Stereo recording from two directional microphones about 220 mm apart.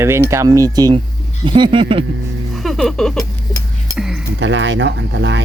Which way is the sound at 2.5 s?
Centre (ahead or behind).